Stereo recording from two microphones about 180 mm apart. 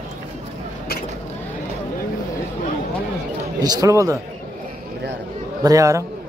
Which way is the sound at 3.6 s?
20° right (ahead or behind).